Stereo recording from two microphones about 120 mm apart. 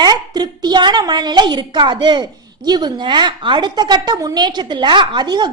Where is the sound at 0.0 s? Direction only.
35° right (ahead or behind).